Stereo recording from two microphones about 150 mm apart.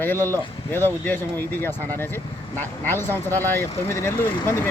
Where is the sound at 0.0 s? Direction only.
15° left (ahead or behind).